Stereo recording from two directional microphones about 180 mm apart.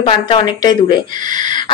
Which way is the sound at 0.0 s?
25° left (ahead or behind).